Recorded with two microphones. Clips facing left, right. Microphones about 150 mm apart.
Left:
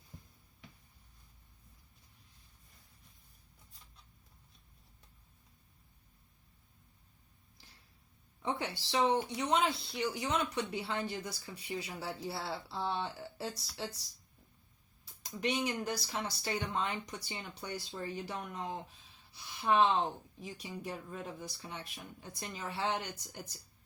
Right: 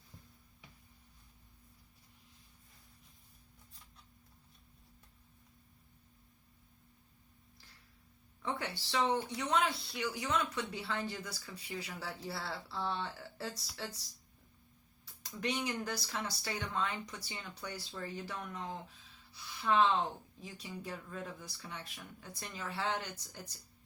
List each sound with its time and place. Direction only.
8.4 s speech: 20° left (ahead or behind)
15.0 s speech: 20° left (ahead or behind)